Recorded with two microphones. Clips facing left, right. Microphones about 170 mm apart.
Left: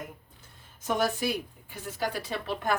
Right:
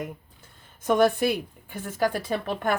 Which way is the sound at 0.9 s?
55° right (ahead or behind).